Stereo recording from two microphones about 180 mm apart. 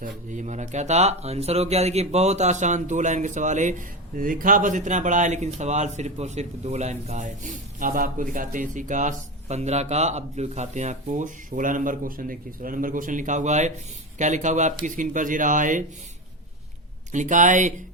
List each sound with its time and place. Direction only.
0.0 s speech: 45° right (ahead or behind)
17.1 s speech: 45° right (ahead or behind)